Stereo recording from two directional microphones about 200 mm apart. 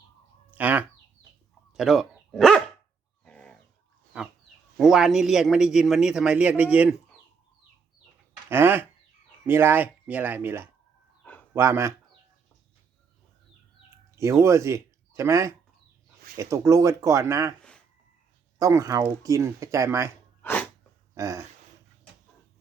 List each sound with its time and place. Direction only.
0.5 s bird: 10° right (ahead or behind)
1.7 s speech: centre (ahead or behind)
3.2 s chicken: 5° left (ahead or behind)
4.1 s a sound: 5° right (ahead or behind)
4.8 s a man's voice: centre (ahead or behind)
8.4 s speech: 10° right (ahead or behind)
11.2 s a sound: 5° left (ahead or behind)
11.5 s speech: 10° right (ahead or behind)
14.2 s speech: 15° right (ahead or behind)
17.6 s a sound: 5° left (ahead or behind)
18.6 s speech: 15° right (ahead or behind)
20.4 s sneeze: 10° left (ahead or behind)
21.2 s speech: 15° right (ahead or behind)